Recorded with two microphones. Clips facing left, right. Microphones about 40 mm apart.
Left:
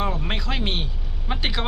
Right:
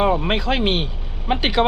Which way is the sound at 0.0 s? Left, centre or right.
Right.